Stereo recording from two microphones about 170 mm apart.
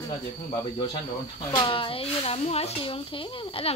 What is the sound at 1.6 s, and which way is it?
Speech, 30° left (ahead or behind).